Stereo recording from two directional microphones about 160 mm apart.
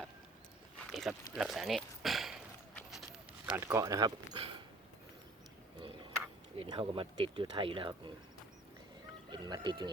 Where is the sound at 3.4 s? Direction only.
15° right (ahead or behind).